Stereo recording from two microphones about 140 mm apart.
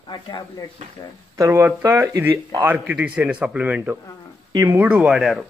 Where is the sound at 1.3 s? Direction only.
20° right (ahead or behind).